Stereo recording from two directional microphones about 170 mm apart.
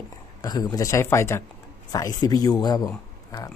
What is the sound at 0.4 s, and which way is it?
Speech, 20° left (ahead or behind).